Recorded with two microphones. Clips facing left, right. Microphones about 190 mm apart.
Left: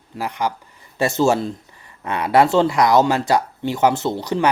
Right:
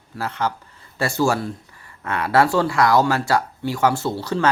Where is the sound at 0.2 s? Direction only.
15° left (ahead or behind).